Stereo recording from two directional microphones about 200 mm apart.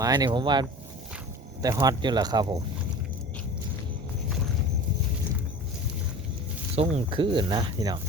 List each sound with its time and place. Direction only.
0.0 s speech: 20° right (ahead or behind)
6.7 s speech: 30° right (ahead or behind)